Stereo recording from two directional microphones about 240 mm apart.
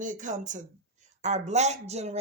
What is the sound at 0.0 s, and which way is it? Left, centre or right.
Speech, right.